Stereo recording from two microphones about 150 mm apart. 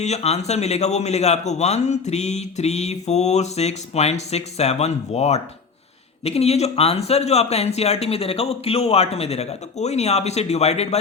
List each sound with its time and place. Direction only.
0.0 s a man's voice: 45° left (ahead or behind)